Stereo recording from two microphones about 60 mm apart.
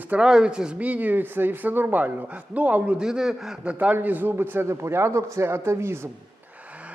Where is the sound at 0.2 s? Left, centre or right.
Centre.